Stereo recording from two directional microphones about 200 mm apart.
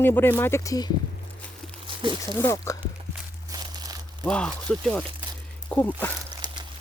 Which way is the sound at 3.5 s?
20° right (ahead or behind).